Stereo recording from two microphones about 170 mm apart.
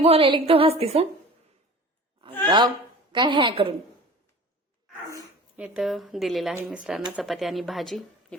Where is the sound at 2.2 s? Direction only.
25° right (ahead or behind).